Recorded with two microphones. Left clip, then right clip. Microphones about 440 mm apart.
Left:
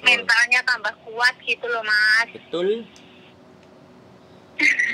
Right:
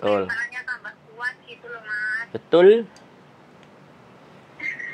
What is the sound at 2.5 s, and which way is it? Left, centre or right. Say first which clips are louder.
Speech: right 10 dB; right.